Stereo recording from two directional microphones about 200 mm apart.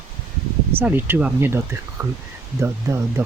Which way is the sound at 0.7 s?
10° right (ahead or behind).